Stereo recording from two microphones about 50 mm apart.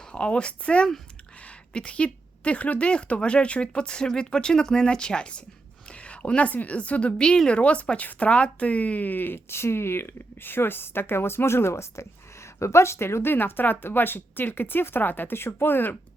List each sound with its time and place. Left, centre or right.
0.1 s speech: left
12.5 s speech: left
13.3 s speech: left